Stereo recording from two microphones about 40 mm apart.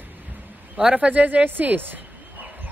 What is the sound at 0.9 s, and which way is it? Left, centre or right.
Speech, right.